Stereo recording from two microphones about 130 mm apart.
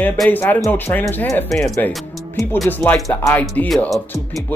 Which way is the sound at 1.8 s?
15° left (ahead or behind).